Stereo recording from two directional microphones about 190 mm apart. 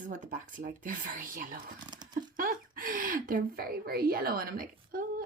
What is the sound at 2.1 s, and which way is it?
Speech, 45° right (ahead or behind).